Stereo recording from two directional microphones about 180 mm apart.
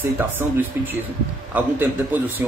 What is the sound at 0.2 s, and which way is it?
Speech, 10° right (ahead or behind).